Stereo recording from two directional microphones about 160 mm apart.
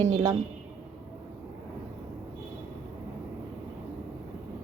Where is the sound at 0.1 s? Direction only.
25° right (ahead or behind).